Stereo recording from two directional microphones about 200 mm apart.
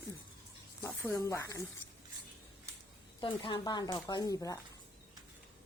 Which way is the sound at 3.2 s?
25° left (ahead or behind).